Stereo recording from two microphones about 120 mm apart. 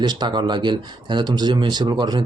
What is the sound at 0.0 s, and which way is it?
Speech, 35° right (ahead or behind).